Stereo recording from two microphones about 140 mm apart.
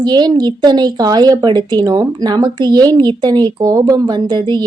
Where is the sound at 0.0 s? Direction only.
30° right (ahead or behind).